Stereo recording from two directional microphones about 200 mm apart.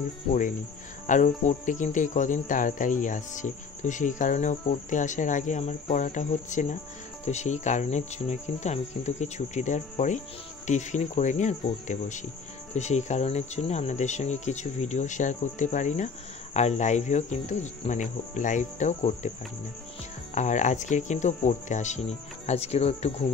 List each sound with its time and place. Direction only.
1.0 s cricket: 40° left (ahead or behind)
20.3 s cricket: 35° left (ahead or behind)